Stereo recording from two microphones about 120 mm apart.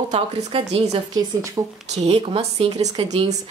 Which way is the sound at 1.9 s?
60° right (ahead or behind).